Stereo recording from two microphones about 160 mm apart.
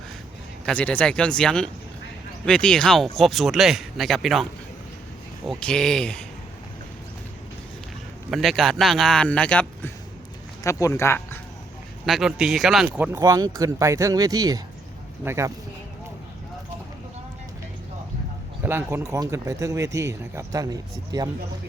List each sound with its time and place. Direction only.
0.6 s speech: 10° left (ahead or behind)
5.5 s speech: 5° left (ahead or behind)
8.3 s speech: centre (ahead or behind)
10.6 s speech: 20° left (ahead or behind)
12.0 s speech: centre (ahead or behind)
13.1 s speech: 20° right (ahead or behind)
18.6 s speech: 15° right (ahead or behind)